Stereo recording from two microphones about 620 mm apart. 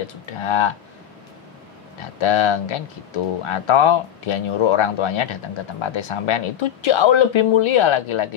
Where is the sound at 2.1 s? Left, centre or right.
Left.